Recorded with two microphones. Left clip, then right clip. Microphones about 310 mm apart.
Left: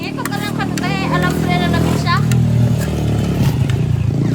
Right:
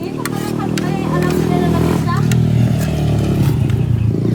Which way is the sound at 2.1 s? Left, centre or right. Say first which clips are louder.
Left 1 dB; centre.